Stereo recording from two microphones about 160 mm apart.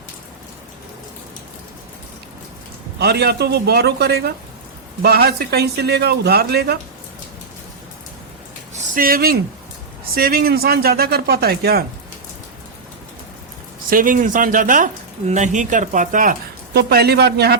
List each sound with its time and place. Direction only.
3.0 s a man's voice: 85° right
5.0 s a man's voice: 75° right (ahead or behind)
8.8 s speech: 65° right (ahead or behind)
13.9 s speech: 60° right (ahead or behind); by 17.6 s 90° right